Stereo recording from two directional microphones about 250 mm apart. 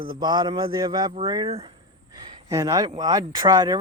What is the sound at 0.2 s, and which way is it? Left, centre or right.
Speech, centre.